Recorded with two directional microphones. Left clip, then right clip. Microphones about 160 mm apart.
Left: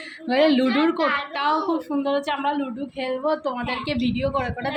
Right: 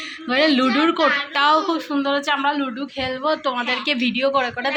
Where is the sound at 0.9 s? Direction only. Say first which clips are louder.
Right 4 dB; 5° right (ahead or behind).